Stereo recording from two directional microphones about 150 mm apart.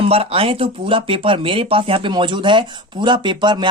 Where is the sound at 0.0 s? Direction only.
40° right (ahead or behind).